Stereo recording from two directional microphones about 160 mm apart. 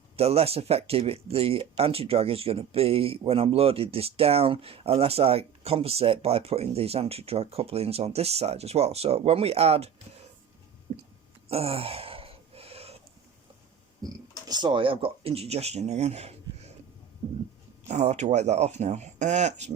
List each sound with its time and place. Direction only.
0.2 s speech: 40° right (ahead or behind)
11.4 s gasp: 35° right (ahead or behind)
14.0 s speech: 25° right (ahead or behind); by 16.7 s 45° right (ahead or behind)
17.8 s speech: 45° right (ahead or behind)